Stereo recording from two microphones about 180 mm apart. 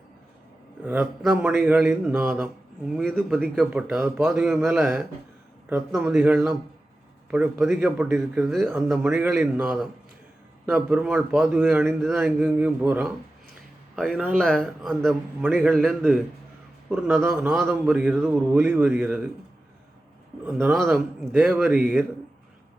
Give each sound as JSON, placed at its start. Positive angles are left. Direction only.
{"t": 0.8, "sound": "a man's voice", "side_deg": -10}
{"t": 13.9, "sound": "a man's voice", "side_deg": 0}
{"t": 20.6, "sound": "a man's voice", "side_deg": -10}